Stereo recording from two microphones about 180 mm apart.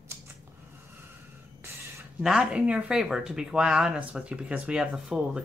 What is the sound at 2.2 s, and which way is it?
Speech, 5° right (ahead or behind).